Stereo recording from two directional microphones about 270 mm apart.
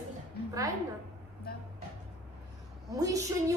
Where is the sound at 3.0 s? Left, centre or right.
Centre.